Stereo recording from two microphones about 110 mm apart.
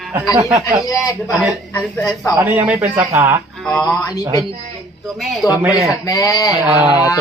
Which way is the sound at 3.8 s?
30° left (ahead or behind).